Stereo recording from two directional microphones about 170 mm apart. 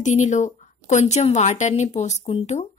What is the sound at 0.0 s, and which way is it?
A woman's voice, 45° left (ahead or behind).